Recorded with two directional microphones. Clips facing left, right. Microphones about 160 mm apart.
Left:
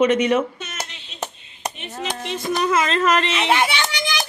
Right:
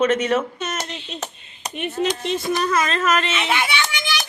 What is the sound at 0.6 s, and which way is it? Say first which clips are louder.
Speech: right 6 dB; 40° right (ahead or behind).